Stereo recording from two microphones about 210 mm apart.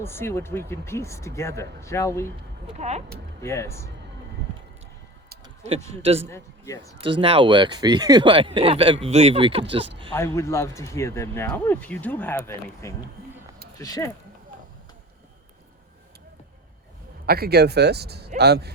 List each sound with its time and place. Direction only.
0.0 s speech: 10° left (ahead or behind)
2.7 s speech: 30° right (ahead or behind)
3.4 s speech: 15° left (ahead or behind)
6.0 s speech: 30° right (ahead or behind)
6.2 s speech: 15° left (ahead or behind)
7.2 s speech: 25° right (ahead or behind)
10.2 s speech: 15° left (ahead or behind)
17.2 s speech: 45° right (ahead or behind)